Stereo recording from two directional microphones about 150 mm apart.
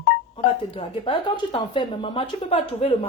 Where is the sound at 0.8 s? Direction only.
35° left (ahead or behind).